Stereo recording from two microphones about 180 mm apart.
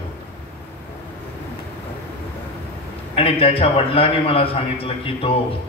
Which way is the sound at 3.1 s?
30° left (ahead or behind).